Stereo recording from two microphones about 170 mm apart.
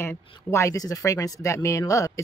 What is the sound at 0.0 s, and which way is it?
Speech, 15° left (ahead or behind).